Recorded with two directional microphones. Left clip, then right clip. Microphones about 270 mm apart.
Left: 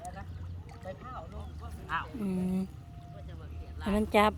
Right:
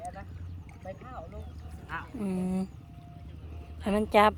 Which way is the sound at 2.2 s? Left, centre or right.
Centre.